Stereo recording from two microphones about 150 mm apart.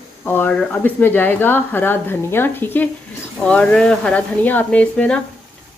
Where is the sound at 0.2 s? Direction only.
10° left (ahead or behind).